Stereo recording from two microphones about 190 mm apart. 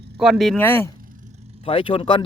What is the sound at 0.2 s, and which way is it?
Speech, centre (ahead or behind).